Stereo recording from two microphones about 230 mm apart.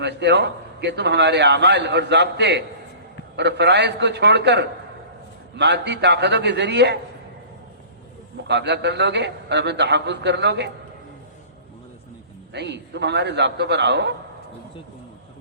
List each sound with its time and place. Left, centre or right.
0.0 s a man's voice: right
8.4 s a man's voice: right
12.5 s a man's voice: right